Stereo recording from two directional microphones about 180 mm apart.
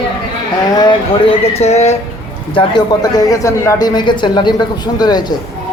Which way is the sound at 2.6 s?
25° left (ahead or behind).